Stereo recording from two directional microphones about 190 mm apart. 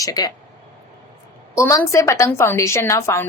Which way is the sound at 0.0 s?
20° left (ahead or behind).